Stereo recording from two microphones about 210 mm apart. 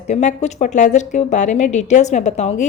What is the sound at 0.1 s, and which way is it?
A woman's voice, 35° left (ahead or behind).